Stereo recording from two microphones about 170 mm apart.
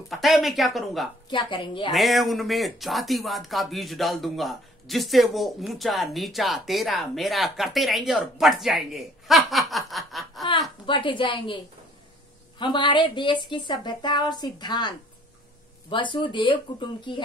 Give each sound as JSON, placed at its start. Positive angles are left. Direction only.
{"t": 0.1, "sound": "speech", "side_deg": 0}
{"t": 1.3, "sound": "a woman's voice", "side_deg": 30}
{"t": 1.9, "sound": "speech", "side_deg": 0}
{"t": 10.9, "sound": "a woman's voice", "side_deg": 30}
{"t": 12.5, "sound": "a woman's voice", "side_deg": 25}